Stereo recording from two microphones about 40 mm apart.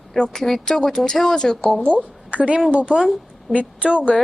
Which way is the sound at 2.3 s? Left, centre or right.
Right.